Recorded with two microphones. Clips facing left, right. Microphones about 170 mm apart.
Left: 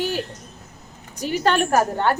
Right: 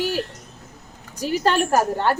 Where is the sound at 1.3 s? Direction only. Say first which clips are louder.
Even; centre (ahead or behind).